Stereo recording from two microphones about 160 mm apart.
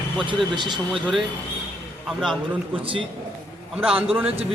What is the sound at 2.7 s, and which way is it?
Speech, 35° right (ahead or behind).